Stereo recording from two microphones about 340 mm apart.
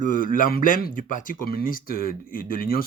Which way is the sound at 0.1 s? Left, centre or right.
Left.